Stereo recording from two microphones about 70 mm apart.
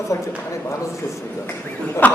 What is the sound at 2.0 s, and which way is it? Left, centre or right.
Speech, left.